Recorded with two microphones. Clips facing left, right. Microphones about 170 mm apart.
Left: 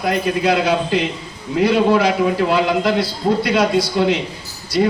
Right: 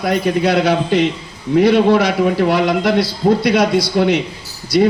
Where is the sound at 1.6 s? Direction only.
70° right (ahead or behind).